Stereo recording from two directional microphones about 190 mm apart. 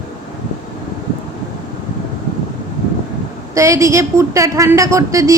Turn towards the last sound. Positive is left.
turn(degrees=-15)  # may be behind; listen again after turning